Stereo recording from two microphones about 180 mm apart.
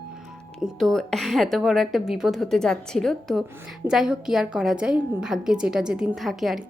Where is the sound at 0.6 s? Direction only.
Centre (ahead or behind).